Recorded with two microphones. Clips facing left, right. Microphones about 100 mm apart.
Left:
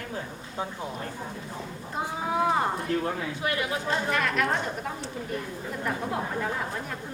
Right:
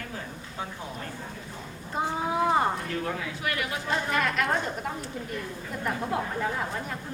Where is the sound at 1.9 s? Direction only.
Centre (ahead or behind).